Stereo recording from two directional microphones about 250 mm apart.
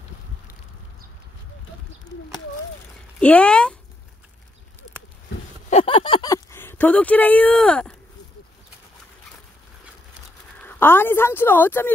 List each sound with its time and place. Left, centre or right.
3.2 s speech: centre
5.7 s speech: left; by 7.9 s centre
10.6 s a woman's voice: centre